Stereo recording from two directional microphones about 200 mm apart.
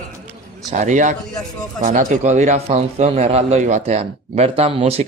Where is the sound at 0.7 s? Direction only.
40° right (ahead or behind).